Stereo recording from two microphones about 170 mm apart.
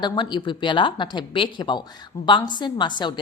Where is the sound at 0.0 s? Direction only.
25° left (ahead or behind).